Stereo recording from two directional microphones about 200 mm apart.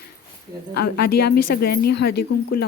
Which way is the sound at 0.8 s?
50° left (ahead or behind).